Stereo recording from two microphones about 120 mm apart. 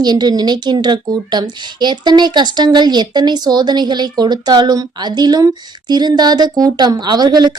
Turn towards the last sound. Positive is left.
turn(degrees=-35)  # may be behind; listen again after turning